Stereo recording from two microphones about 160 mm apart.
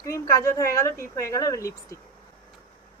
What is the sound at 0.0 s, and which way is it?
A woman's voice, 20° left (ahead or behind).